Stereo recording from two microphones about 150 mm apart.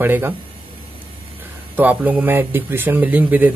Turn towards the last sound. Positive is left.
turn(degrees=-10)  # may be behind; listen again after turning